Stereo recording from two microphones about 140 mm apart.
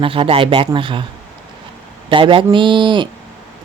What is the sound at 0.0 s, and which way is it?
Speech, 40° right (ahead or behind).